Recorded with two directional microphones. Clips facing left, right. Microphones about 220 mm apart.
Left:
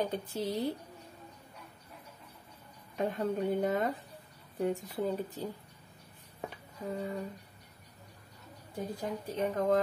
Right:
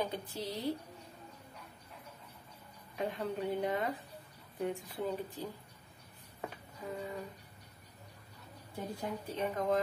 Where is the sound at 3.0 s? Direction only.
45° left (ahead or behind).